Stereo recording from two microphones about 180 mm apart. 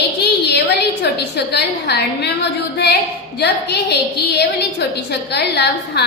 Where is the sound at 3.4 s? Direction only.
70° left (ahead or behind).